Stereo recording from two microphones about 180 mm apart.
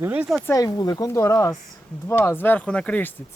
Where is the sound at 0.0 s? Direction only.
10° right (ahead or behind).